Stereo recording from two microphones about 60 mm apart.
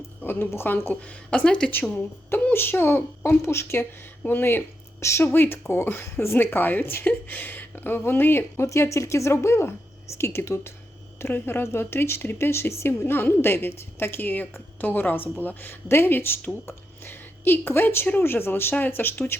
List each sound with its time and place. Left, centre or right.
0.2 s a woman's voice: left
1.3 s speech: centre
2.3 s a woman's voice: left
4.3 s a woman's voice: left
4.9 s speech: left
5.3 s a woman's voice: left
8.6 s speech: left
11.3 s a woman's voice: left
16.6 s a sound: left
17.7 s a woman's voice: left